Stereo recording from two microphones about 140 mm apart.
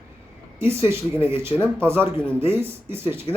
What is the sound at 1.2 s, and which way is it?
Speech, 15° right (ahead or behind).